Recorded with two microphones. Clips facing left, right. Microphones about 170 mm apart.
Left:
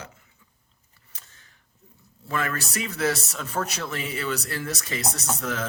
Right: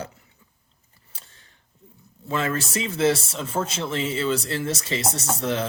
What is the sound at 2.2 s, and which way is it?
Speech, 25° right (ahead or behind).